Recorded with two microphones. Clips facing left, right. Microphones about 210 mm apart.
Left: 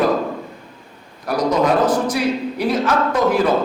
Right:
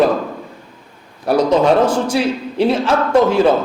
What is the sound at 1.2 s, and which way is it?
A man's voice, 30° right (ahead or behind).